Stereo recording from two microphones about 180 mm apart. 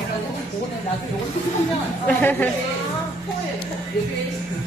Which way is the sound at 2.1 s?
10° left (ahead or behind).